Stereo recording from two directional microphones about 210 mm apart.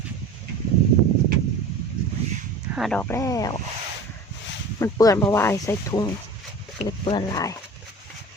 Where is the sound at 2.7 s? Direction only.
Centre (ahead or behind).